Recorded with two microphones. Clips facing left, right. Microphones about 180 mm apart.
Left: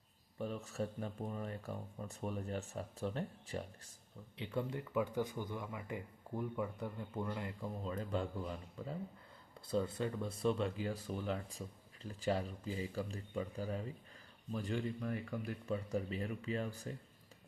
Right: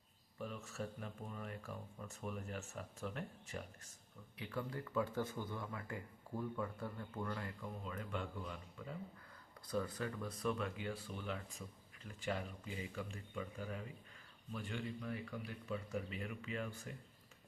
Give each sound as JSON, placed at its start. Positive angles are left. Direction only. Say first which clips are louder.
{"t": 0.3, "sound": "speech", "louder": "left 5 dB", "side_deg": 35}
{"t": 7.6, "sound": "speech", "louder": "left 5 dB", "side_deg": 35}